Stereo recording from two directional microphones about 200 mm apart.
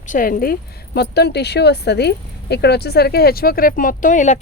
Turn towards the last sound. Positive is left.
turn(degrees=40)  # may be behind; listen again after turning